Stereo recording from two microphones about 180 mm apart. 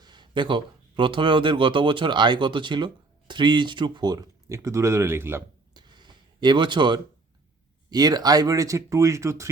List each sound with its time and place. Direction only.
0.0 s speech: 25° right (ahead or behind)
5.8 s a sound: 25° right (ahead or behind)
7.9 s speech: 20° right (ahead or behind)